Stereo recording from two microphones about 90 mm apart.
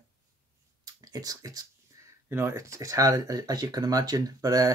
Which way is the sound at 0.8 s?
45° right (ahead or behind).